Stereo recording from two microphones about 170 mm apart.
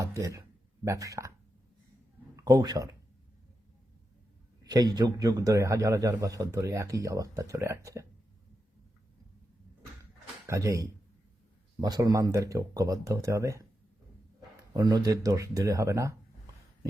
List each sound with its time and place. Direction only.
0.0 s a man's voice: 20° right (ahead or behind)
2.3 s speech: 20° right (ahead or behind)
4.6 s a man's voice: 25° right (ahead or behind)
10.4 s a man's voice: 15° right (ahead or behind)
14.7 s a man's voice: 25° right (ahead or behind)